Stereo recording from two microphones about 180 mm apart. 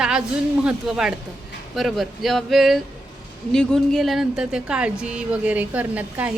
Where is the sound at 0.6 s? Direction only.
5° right (ahead or behind).